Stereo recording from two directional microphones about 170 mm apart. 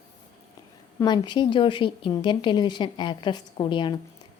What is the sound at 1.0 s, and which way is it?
A woman's voice, 25° left (ahead or behind).